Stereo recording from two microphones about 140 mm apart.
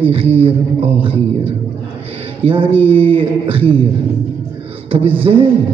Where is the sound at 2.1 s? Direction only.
45° right (ahead or behind).